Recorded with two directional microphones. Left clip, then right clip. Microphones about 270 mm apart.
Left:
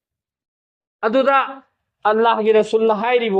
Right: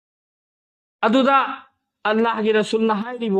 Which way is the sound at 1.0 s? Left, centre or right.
Right.